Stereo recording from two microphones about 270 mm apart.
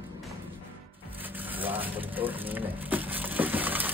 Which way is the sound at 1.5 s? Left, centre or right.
Centre.